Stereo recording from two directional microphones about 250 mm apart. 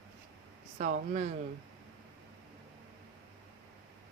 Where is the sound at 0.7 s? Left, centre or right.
Right.